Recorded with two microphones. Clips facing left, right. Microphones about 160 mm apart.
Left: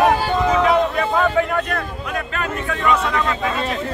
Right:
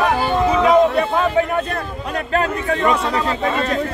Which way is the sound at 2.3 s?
35° right (ahead or behind).